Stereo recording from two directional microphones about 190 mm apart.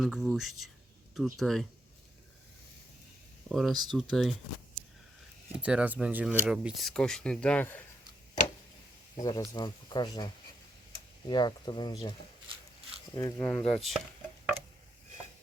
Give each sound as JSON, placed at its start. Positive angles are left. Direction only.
{"t": 0.0, "sound": "speech", "side_deg": 0}
{"t": 3.5, "sound": "speech", "side_deg": 0}
{"t": 5.5, "sound": "speech", "side_deg": -5}
{"t": 9.1, "sound": "speech", "side_deg": 20}
{"t": 11.3, "sound": "speech", "side_deg": 25}
{"t": 13.1, "sound": "speech", "side_deg": 10}